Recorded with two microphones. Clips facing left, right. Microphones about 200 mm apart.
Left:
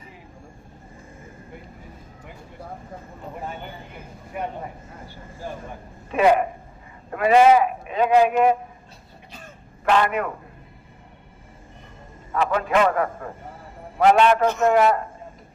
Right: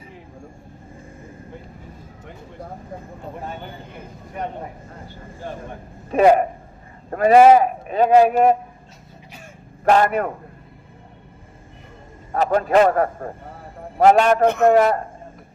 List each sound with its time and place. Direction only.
6.1 s speech: 40° right (ahead or behind)
9.9 s speech: 40° right (ahead or behind)
12.3 s a man's voice: 40° right (ahead or behind); by 14.7 s 55° right (ahead or behind)
14.7 s speech: 40° right (ahead or behind)